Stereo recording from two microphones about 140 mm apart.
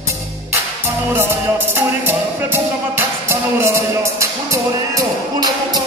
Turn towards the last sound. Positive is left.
turn(degrees=-25)  # may be behind; listen again after turning